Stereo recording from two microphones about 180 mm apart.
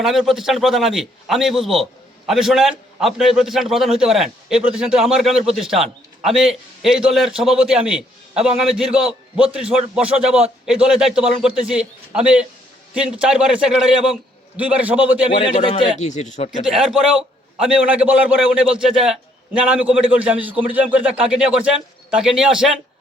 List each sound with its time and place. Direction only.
0.0 s a man's voice: centre (ahead or behind)
16.0 s speech: 40° left (ahead or behind)
16.5 s a man's voice: centre (ahead or behind)